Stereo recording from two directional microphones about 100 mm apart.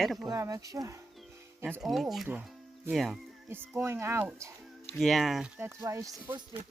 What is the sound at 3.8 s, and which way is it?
Speech, 25° right (ahead or behind).